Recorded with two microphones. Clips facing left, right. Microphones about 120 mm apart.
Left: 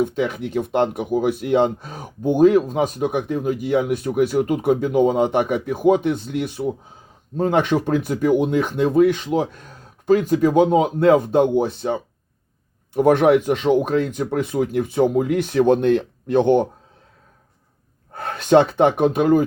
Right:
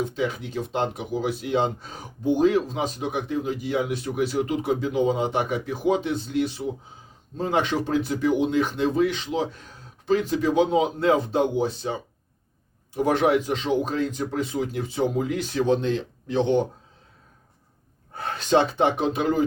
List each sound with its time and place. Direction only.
0.0 s speech: 60° left (ahead or behind)
18.1 s speech: 55° left (ahead or behind)